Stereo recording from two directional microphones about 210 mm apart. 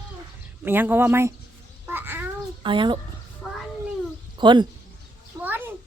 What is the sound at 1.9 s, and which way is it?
Babbling, 10° right (ahead or behind).